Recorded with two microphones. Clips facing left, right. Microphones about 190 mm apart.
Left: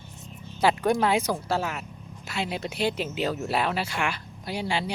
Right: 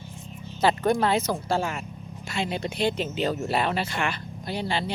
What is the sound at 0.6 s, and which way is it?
Speech, 10° left (ahead or behind).